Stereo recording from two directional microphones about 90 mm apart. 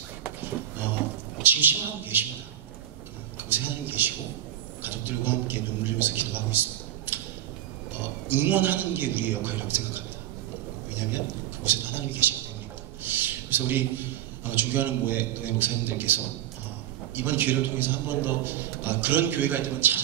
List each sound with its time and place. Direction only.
1.4 s a man's voice: 20° right (ahead or behind)
3.4 s a sound: 20° right (ahead or behind)
4.8 s a man's voice: 20° right (ahead or behind)
7.1 s a sound: 20° right (ahead or behind)
8.3 s a man's voice: 20° right (ahead or behind)
11.6 s a man's voice: 20° right (ahead or behind)